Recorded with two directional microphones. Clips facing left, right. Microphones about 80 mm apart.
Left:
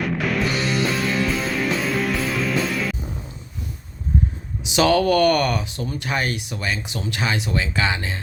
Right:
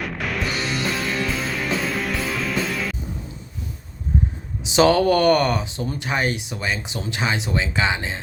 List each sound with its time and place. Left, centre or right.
0.0 s music: centre
4.6 s speech: right